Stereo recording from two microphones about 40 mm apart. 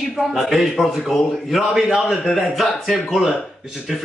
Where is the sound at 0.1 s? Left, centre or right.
Centre.